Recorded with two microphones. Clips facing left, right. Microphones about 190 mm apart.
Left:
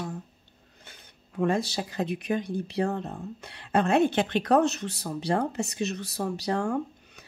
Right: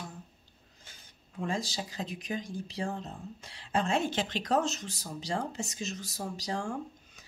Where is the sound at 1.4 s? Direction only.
65° left (ahead or behind).